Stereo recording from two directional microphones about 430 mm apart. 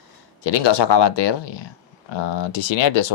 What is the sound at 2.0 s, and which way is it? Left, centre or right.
Speech, left.